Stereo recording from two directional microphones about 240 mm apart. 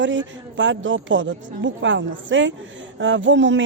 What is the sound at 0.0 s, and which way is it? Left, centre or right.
Speech, right.